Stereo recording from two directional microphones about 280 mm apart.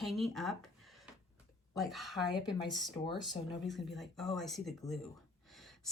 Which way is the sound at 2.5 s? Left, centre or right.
Centre.